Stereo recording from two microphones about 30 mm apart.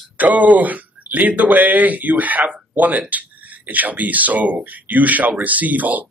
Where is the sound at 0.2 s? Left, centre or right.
Right.